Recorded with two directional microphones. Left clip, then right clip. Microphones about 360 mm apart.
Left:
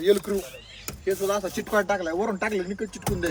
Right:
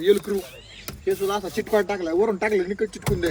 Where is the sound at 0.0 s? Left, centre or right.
Left.